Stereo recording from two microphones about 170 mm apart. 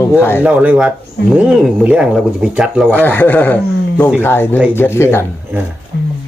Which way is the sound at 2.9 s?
10° left (ahead or behind).